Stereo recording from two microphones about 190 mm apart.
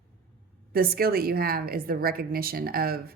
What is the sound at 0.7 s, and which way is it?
A woman's voice, 55° right (ahead or behind).